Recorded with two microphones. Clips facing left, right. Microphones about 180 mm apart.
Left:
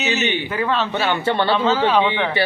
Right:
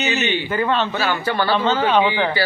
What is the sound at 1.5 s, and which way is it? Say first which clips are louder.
Speech: right 2 dB; centre (ahead or behind).